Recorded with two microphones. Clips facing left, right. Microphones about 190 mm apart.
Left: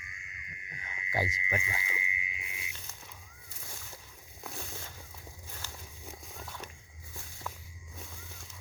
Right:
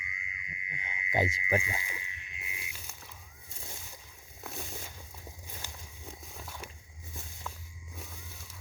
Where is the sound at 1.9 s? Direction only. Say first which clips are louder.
Left 5 dB; 15° left (ahead or behind).